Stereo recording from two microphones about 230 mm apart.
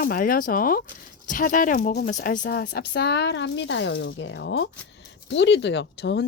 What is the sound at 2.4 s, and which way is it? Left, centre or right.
Speech, left.